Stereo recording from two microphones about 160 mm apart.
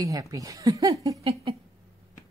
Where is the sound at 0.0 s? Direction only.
20° right (ahead or behind).